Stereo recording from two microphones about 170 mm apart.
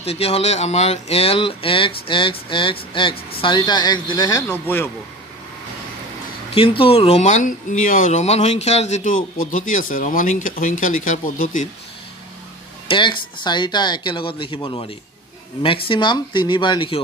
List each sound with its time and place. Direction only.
0.0 s speech: 35° left (ahead or behind); by 4.8 s 15° left (ahead or behind)
6.5 s speech: 35° left (ahead or behind); by 11.6 s 50° left (ahead or behind)
12.8 s speech: 30° left (ahead or behind)